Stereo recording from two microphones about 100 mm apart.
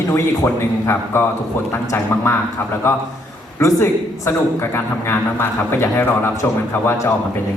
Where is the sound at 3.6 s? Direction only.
30° left (ahead or behind).